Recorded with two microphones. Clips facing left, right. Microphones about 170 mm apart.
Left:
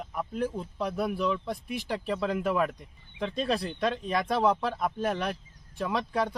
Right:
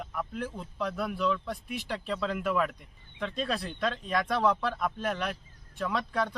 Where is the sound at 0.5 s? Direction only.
15° left (ahead or behind).